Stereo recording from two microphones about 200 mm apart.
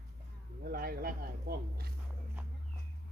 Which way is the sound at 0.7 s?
50° right (ahead or behind).